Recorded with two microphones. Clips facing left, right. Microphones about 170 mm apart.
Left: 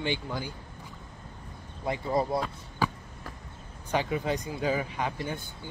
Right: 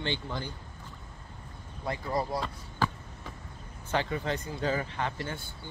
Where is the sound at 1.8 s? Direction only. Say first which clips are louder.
Left 3 dB; 20° left (ahead or behind).